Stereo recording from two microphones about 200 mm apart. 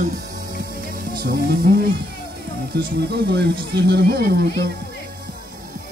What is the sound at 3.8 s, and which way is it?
Music, 55° right (ahead or behind).